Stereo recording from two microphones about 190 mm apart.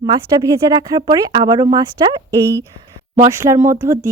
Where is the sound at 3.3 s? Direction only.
15° right (ahead or behind).